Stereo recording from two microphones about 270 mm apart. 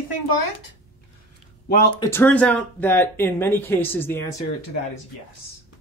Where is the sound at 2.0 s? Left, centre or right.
Centre.